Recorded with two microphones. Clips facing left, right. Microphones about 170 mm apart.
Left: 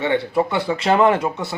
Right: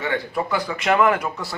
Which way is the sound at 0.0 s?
25° left (ahead or behind).